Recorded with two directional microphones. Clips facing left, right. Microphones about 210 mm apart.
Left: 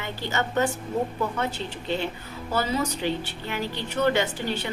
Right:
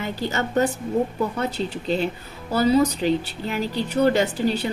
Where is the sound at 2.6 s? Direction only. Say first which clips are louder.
Right 8 dB; 35° right (ahead or behind).